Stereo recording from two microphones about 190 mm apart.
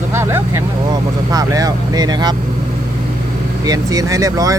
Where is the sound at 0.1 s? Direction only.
15° right (ahead or behind).